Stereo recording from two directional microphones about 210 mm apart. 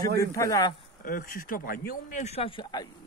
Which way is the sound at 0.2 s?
15° left (ahead or behind).